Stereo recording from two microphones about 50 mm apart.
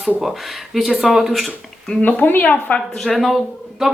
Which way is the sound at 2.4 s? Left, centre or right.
Left.